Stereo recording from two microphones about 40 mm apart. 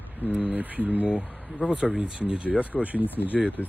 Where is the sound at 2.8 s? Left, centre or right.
Right.